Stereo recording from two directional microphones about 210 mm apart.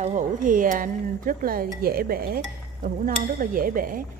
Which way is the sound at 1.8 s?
45° right (ahead or behind).